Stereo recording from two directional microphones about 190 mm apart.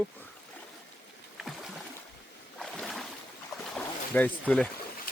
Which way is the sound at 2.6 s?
Centre (ahead or behind).